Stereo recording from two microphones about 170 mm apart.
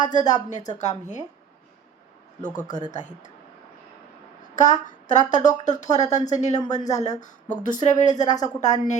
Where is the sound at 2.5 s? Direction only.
20° left (ahead or behind).